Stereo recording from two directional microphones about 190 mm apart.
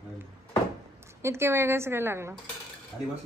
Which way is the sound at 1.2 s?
15° right (ahead or behind).